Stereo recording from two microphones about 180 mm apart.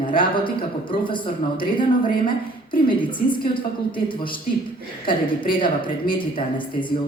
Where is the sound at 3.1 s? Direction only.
25° left (ahead or behind).